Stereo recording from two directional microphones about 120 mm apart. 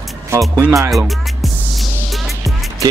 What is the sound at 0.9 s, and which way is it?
Music, centre (ahead or behind).